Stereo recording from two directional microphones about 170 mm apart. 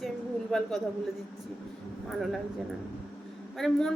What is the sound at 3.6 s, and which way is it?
Speech, 5° left (ahead or behind).